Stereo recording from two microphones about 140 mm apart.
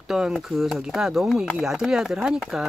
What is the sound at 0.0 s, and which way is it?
Speech, 5° right (ahead or behind).